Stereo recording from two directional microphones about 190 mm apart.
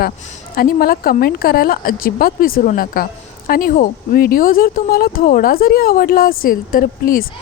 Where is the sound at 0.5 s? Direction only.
50° left (ahead or behind).